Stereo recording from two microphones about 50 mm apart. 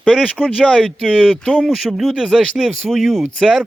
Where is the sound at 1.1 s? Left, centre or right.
Centre.